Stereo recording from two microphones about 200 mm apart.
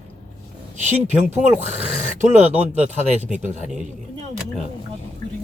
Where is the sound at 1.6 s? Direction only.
35° right (ahead or behind).